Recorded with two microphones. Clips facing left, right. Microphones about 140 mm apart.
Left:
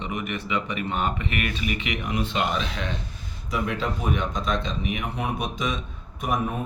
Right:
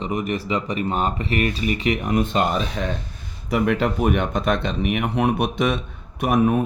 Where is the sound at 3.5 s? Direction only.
65° right (ahead or behind).